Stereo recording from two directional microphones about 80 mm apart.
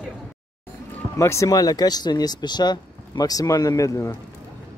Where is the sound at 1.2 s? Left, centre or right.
Left.